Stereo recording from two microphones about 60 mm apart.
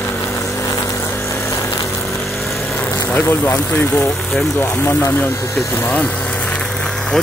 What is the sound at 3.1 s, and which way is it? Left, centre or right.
Speech, left.